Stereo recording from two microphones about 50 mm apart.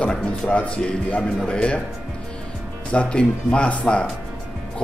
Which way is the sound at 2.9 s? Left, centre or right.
Left.